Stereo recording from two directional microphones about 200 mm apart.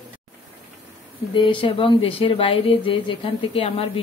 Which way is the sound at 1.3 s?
25° left (ahead or behind).